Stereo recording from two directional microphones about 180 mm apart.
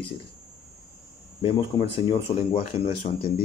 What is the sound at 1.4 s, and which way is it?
Speech, 30° left (ahead or behind).